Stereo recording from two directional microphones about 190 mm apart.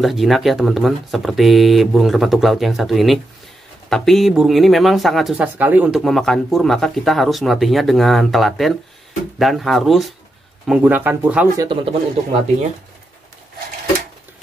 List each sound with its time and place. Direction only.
0.0 s speech: centre (ahead or behind)
11.5 s speech: 25° right (ahead or behind)